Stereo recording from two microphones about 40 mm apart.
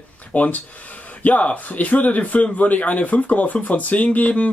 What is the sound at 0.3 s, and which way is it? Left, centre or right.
Speech, left.